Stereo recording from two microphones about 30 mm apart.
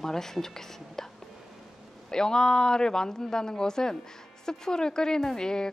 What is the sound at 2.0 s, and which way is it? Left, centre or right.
A woman's voice, left.